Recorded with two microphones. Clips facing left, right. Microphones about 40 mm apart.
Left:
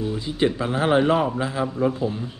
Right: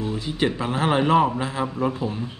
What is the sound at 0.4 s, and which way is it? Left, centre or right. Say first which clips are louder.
Speech: left 2 dB; right.